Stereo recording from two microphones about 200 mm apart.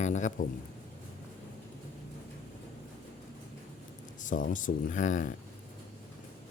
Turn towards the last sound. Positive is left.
turn(degrees=40)  # may be behind; listen again after turning